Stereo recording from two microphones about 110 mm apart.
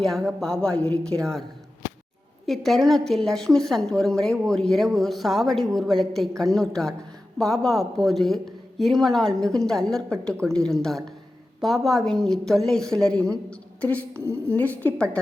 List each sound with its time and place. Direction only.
0.0 s a woman's voice: 5° left (ahead or behind)
2.5 s a woman's voice: centre (ahead or behind)